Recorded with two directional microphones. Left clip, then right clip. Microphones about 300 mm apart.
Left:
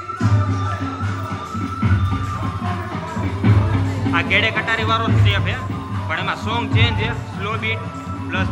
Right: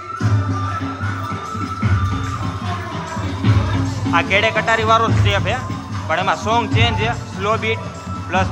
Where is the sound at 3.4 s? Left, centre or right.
Left.